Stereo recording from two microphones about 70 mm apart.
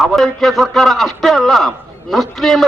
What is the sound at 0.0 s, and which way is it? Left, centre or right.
A man's voice, centre.